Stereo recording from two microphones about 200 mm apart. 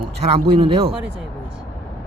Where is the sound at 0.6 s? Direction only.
25° right (ahead or behind).